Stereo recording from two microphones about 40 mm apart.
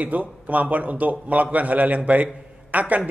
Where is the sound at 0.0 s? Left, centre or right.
Right.